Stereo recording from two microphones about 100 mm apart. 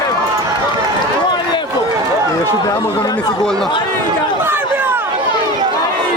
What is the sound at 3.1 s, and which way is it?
Chatter, 5° left (ahead or behind).